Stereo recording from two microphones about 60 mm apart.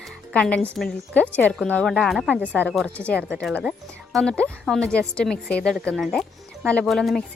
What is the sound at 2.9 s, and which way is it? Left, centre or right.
Speech, left.